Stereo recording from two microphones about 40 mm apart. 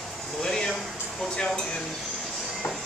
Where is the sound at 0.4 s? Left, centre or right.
Centre.